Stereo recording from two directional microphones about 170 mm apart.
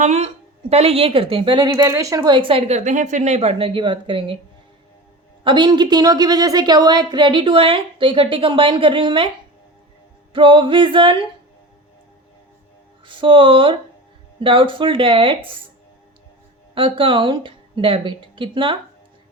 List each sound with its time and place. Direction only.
0.0 s a woman's voice: 40° right (ahead or behind)
5.4 s a woman's voice: 25° right (ahead or behind)
10.3 s a woman's voice: 30° right (ahead or behind)
13.1 s a woman's voice: 30° right (ahead or behind)
16.7 s a woman's voice: 30° right (ahead or behind)